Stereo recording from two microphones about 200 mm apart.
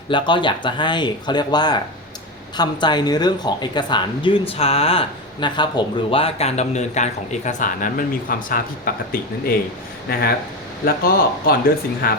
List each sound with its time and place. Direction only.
0.1 s speech: 25° left (ahead or behind); by 8.9 s 45° left (ahead or behind)
10.1 s speech: 50° left (ahead or behind)